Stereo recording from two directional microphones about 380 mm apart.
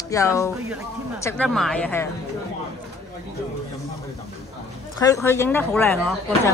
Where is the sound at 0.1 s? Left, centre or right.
Centre.